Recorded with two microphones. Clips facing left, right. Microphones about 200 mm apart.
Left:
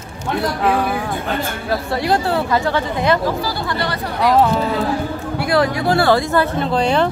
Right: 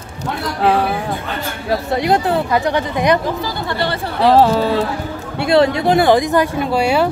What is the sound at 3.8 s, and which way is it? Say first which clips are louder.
Speech: right 4 dB; 30° right (ahead or behind).